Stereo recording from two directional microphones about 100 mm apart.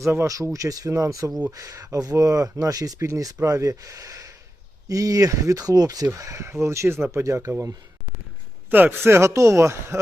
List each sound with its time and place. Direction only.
0.0 s speech: 30° right (ahead or behind)
8.7 s speech: 20° right (ahead or behind)